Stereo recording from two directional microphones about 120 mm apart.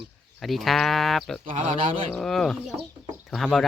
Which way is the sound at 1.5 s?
75° right (ahead or behind).